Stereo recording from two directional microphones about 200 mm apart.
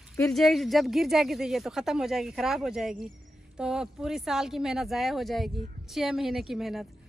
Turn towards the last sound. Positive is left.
turn(degrees=0)  # may be behind; listen again after turning